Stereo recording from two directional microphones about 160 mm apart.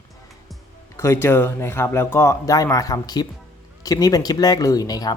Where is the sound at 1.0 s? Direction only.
15° left (ahead or behind).